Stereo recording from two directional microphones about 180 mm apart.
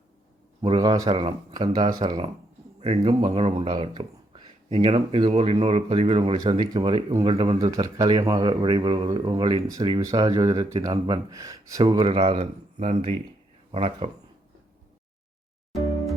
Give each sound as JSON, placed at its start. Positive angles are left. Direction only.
{"t": 0.6, "sound": "speech", "side_deg": -20}
{"t": 3.2, "sound": "speech", "side_deg": -35}
{"t": 7.7, "sound": "speech", "side_deg": -20}